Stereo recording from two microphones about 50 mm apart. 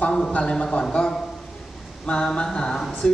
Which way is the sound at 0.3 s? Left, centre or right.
Left.